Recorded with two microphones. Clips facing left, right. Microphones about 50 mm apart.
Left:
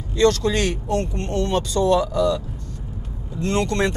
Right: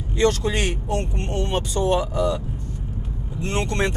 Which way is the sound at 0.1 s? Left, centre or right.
Centre.